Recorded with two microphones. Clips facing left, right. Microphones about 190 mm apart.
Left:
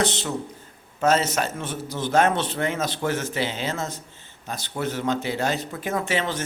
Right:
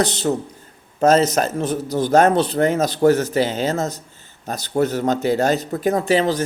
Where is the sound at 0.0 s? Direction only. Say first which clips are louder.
Right 5 dB; 40° right (ahead or behind).